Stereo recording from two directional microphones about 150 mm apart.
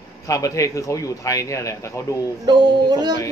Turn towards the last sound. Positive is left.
turn(degrees=-30)  # may be behind; listen again after turning